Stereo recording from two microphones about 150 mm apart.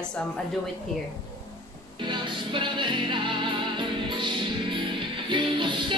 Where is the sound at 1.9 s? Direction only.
35° right (ahead or behind).